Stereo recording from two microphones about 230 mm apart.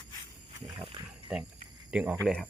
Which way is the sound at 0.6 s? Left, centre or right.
Right.